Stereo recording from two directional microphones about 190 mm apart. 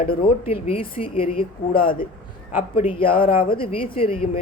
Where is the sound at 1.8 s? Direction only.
50° left (ahead or behind).